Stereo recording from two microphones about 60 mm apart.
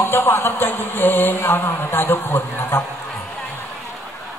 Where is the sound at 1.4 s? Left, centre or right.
Left.